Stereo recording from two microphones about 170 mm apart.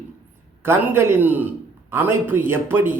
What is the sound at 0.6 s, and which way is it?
A man's voice, 15° right (ahead or behind).